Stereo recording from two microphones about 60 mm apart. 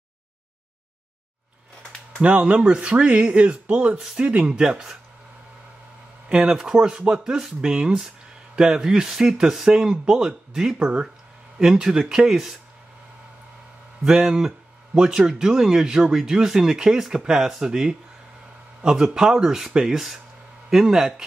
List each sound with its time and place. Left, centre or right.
2.2 s speech: centre
6.2 s speech: centre
14.0 s speech: centre